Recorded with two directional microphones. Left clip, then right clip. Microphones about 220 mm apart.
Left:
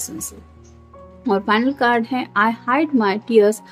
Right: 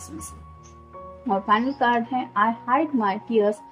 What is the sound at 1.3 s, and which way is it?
A woman's voice, 40° left (ahead or behind).